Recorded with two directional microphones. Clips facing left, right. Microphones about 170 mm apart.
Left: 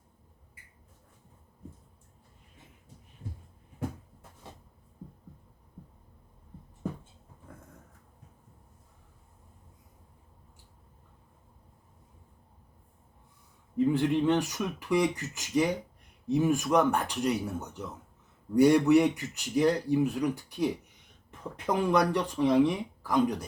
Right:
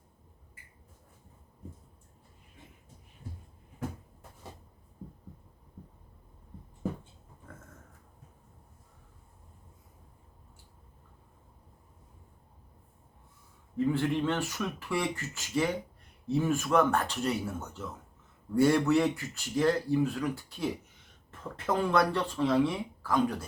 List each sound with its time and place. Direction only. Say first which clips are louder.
13.7 s speech: left 3 dB; 15° left (ahead or behind)